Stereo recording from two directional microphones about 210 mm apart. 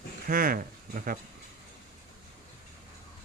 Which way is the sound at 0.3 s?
45° right (ahead or behind).